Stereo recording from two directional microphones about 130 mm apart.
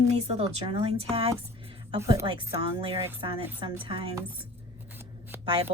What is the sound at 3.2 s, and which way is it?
Speech, 45° right (ahead or behind).